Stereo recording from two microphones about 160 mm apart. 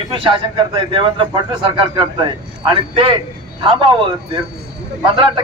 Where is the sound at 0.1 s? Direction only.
30° right (ahead or behind).